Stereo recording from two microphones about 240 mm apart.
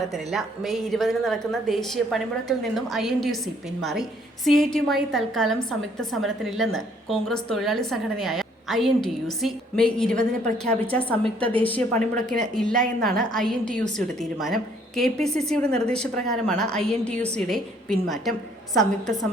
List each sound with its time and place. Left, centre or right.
0.1 s a woman's voice: centre